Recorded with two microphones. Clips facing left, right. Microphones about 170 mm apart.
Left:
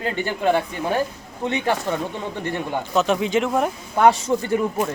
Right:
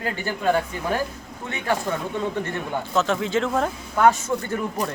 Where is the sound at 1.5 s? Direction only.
20° left (ahead or behind).